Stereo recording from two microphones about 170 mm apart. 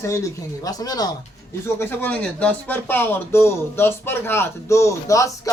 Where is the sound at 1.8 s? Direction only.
10° left (ahead or behind).